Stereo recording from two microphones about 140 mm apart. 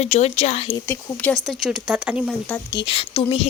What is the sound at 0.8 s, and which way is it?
Speech, 15° left (ahead or behind).